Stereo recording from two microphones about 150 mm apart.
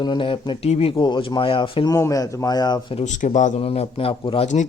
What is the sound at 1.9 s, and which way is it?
A man's voice, 20° left (ahead or behind).